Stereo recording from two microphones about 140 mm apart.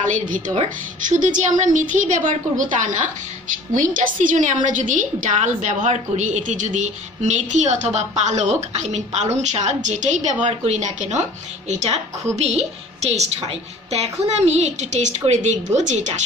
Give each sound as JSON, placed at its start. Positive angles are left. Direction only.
{"t": 1.0, "sound": "a woman's voice", "side_deg": -65}
{"t": 14.3, "sound": "a woman's voice", "side_deg": -50}